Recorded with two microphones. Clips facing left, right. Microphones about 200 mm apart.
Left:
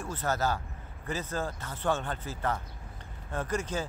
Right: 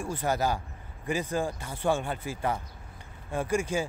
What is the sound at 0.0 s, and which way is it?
Speech, 10° right (ahead or behind).